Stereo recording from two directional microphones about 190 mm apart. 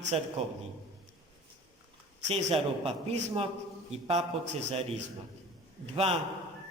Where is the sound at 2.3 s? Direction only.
35° right (ahead or behind).